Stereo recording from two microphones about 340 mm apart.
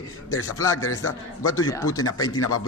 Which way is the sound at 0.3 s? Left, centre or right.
Left.